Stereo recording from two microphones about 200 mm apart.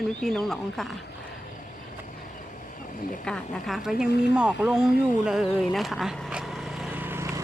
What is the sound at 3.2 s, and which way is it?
Speech, 5° left (ahead or behind).